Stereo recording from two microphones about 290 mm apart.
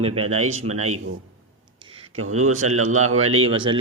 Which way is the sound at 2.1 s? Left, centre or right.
Right.